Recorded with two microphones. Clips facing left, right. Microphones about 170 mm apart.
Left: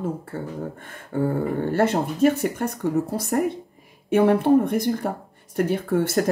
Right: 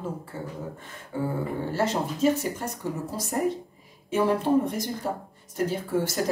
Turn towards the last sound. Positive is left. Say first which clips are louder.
# left 5 dB
turn(degrees=60)  # may be behind; listen again after turning